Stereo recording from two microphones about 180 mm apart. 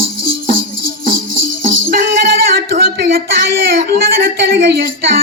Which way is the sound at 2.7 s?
55° right (ahead or behind).